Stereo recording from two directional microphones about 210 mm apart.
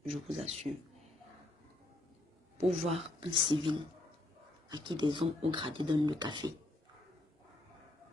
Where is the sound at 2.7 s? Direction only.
30° right (ahead or behind).